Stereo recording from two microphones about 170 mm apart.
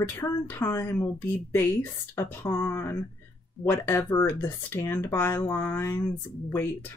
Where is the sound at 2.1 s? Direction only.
15° left (ahead or behind).